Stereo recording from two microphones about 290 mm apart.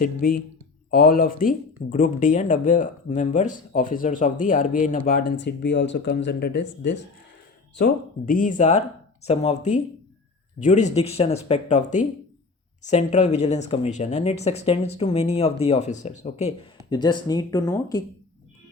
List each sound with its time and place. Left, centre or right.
0.0 s speech: left; by 18.0 s centre